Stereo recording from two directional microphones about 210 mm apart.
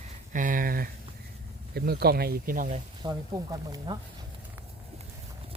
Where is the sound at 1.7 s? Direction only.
50° right (ahead or behind).